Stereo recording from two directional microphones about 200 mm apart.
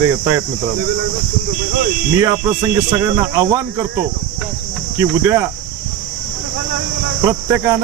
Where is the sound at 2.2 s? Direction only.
15° right (ahead or behind).